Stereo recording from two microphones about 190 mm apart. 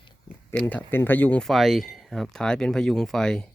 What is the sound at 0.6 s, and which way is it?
Speech, 10° left (ahead or behind).